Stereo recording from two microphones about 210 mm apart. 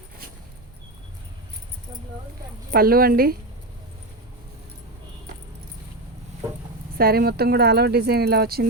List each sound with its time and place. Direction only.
2.7 s speech: 45° right (ahead or behind)
6.9 s speech: 45° right (ahead or behind)